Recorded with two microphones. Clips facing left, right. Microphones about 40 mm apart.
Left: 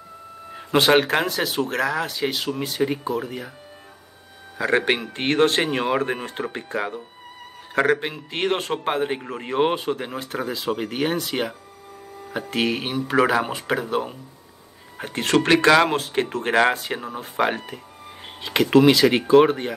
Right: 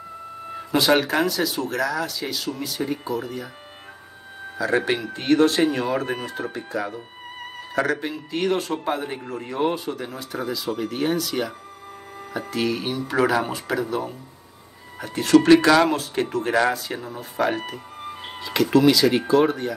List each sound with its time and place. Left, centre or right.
0.6 s speech: left
4.6 s speech: left